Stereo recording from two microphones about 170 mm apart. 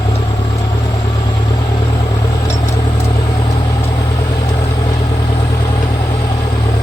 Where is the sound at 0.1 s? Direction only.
25° left (ahead or behind).